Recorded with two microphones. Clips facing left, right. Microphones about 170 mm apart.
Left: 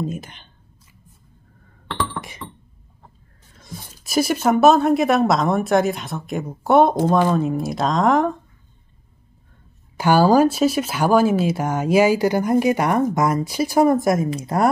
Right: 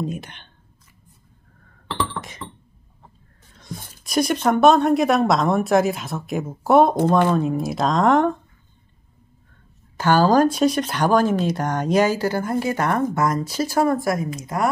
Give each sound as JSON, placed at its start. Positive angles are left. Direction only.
{"t": 0.0, "sound": "speech", "side_deg": 0}
{"t": 2.1, "sound": "music", "side_deg": 10}
{"t": 3.5, "sound": "speech", "side_deg": 0}
{"t": 9.9, "sound": "speech", "side_deg": 10}